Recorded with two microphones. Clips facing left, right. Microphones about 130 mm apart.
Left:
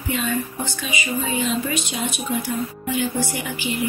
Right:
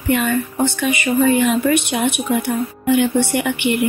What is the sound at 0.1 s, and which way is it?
Speech, 60° right (ahead or behind).